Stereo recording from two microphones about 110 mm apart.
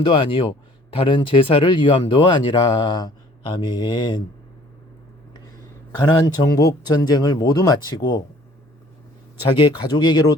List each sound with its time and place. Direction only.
0.0 s speech: 50° left (ahead or behind)
6.0 s speech: 40° left (ahead or behind)
9.6 s speech: 45° left (ahead or behind)